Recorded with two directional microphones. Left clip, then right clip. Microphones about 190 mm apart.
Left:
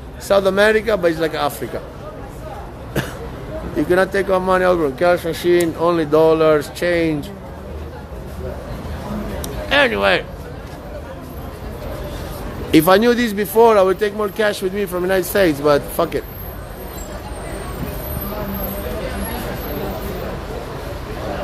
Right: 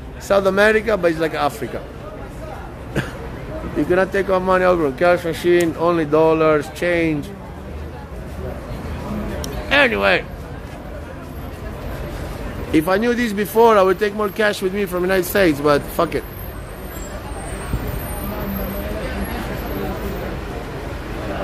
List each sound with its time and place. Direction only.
0.3 s speech: centre (ahead or behind)
3.7 s speech: 5° left (ahead or behind)
9.7 s speech: centre (ahead or behind)
12.7 s speech: 45° left (ahead or behind)
13.0 s speech: 25° left (ahead or behind)
13.4 s speech: 5° right (ahead or behind)